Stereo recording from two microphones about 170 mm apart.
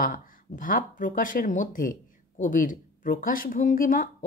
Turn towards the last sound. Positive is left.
turn(degrees=55)  # may be behind; listen again after turning